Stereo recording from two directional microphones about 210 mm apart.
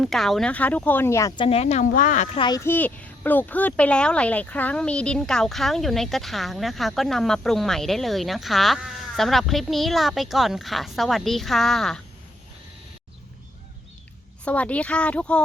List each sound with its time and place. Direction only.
0.0 s speech: centre (ahead or behind)
1.5 s speech: 30° left (ahead or behind)
2.4 s a child's voice: 15° left (ahead or behind)
14.4 s a child's voice: 5° left (ahead or behind)